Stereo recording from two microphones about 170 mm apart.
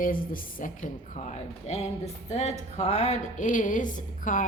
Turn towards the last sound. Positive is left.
turn(degrees=50)  # may be behind; listen again after turning